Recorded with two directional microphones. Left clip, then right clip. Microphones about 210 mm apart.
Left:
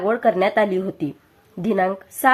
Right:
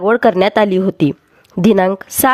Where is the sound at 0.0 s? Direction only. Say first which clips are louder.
Right 6 dB; 50° right (ahead or behind).